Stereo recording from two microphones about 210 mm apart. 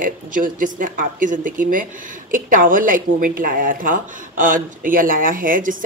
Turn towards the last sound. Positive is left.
turn(degrees=-40)  # may be behind; listen again after turning